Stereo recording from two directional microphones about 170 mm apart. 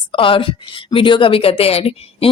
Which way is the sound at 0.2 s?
30° left (ahead or behind).